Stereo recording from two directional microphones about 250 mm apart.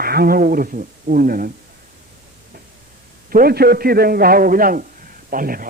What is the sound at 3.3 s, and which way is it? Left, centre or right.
Speech, right.